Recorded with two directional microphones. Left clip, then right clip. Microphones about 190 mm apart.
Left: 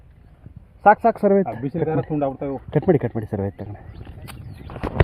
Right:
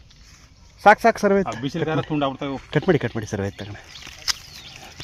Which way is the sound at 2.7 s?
15° left (ahead or behind).